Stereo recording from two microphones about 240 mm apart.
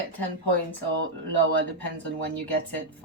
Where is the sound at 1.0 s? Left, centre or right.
Right.